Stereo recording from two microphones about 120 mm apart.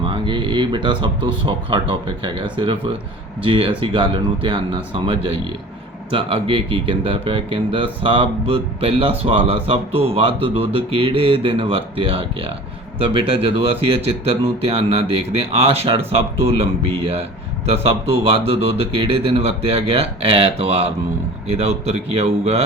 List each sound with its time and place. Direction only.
0.0 s speech: 45° right (ahead or behind)